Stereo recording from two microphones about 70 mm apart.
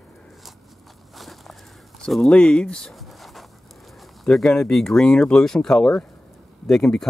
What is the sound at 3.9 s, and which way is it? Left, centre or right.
Speech, centre.